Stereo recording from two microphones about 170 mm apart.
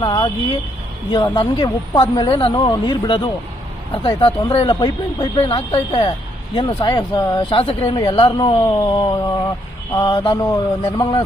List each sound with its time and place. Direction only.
0.0 s speech: 30° left (ahead or behind)